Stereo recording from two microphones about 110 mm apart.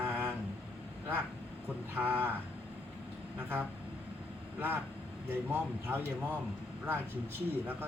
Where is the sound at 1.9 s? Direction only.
20° right (ahead or behind).